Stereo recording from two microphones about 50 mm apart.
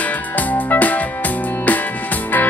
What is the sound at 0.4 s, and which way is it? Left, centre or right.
Music, left.